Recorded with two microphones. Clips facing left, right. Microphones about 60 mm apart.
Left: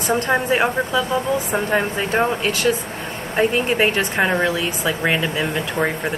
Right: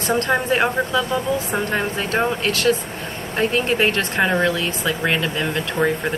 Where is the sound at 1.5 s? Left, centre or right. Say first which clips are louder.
Left 2 dB; centre.